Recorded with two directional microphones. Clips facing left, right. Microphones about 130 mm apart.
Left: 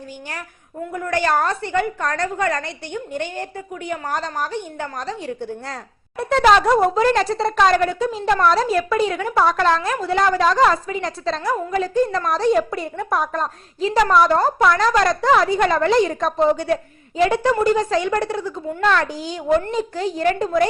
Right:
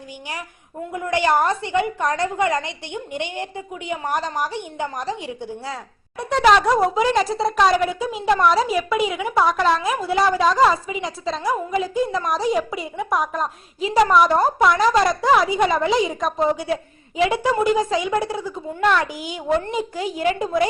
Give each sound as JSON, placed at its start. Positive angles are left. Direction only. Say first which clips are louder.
{"t": 0.9, "sound": "a woman's voice", "louder": "right 1 dB", "side_deg": -20}
{"t": 5.7, "sound": "a woman's voice", "louder": "left 2 dB", "side_deg": 0}
{"t": 13.8, "sound": "a woman's voice", "louder": "even", "side_deg": -15}